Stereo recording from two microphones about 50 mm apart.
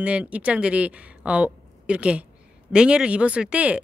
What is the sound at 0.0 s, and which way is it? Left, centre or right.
Speech, right.